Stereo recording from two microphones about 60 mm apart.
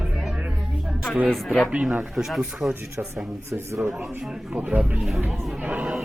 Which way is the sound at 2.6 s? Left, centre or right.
Right.